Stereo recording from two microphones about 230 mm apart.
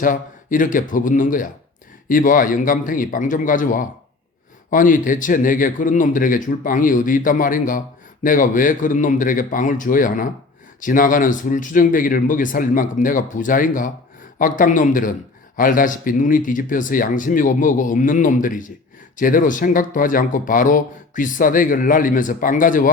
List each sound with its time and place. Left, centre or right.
0.0 s speech: left